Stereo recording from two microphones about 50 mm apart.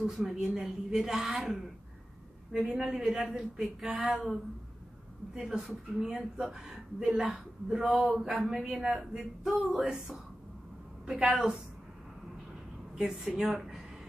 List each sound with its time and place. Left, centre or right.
0.0 s speech: centre
5.3 s speech: centre
11.2 s speech: centre
12.9 s a woman's voice: centre